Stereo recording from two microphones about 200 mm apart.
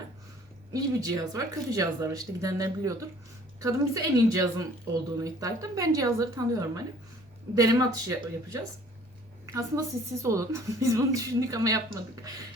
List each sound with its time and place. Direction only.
0.7 s speech: 15° right (ahead or behind)